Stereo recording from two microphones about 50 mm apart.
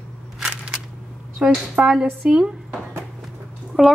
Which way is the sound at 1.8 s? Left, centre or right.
Centre.